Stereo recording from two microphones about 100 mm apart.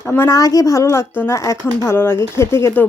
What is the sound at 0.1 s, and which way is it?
Speech, 25° left (ahead or behind).